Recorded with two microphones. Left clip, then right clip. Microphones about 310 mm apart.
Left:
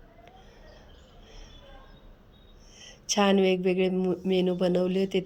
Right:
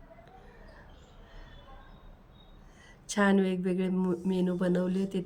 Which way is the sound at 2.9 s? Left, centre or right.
Centre.